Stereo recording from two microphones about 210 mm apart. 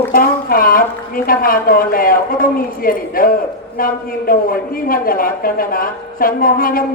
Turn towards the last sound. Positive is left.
turn(degrees=45)  # may be behind; listen again after turning